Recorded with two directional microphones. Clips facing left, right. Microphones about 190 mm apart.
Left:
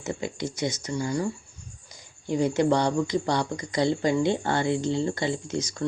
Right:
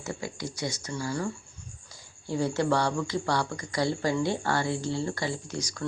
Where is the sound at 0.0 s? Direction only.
20° left (ahead or behind).